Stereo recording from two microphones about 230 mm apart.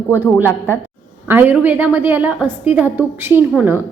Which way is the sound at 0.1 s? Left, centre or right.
Centre.